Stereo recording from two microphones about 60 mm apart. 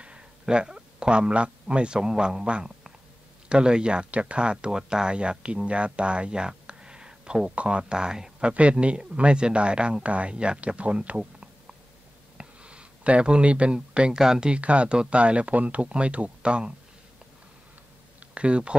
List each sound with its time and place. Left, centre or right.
0.0 s speech: centre
18.3 s speech: centre